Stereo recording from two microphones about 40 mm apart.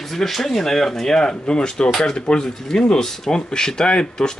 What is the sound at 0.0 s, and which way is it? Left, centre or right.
A man's voice, centre.